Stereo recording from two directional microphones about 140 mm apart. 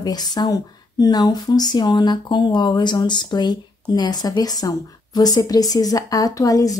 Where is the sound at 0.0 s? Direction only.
30° left (ahead or behind).